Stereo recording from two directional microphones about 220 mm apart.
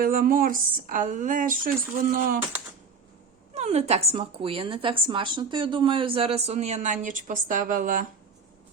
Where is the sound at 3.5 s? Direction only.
30° right (ahead or behind).